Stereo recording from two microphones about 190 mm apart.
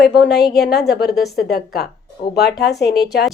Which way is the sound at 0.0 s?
60° left (ahead or behind).